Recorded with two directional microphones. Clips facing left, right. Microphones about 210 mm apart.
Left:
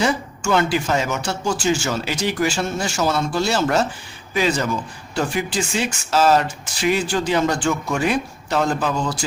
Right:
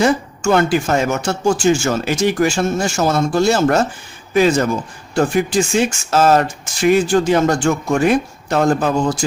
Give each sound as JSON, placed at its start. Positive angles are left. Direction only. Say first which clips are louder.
{"t": 0.0, "sound": "speech", "louder": "right 6 dB", "side_deg": -50}